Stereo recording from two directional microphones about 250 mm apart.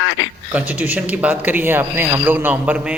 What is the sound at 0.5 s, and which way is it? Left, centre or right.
Speech, centre.